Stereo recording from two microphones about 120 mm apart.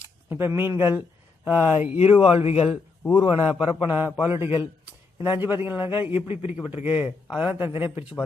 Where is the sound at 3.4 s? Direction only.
15° right (ahead or behind).